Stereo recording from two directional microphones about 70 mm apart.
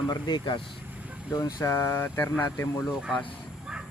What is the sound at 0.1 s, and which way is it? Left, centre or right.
Speech, left.